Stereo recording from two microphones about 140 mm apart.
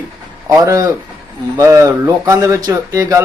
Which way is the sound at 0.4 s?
20° right (ahead or behind).